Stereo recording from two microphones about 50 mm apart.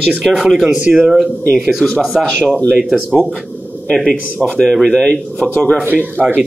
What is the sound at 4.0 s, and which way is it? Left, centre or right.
A man's voice, centre.